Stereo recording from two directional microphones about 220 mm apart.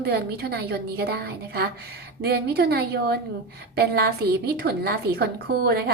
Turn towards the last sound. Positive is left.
turn(degrees=-45)  # may be behind; listen again after turning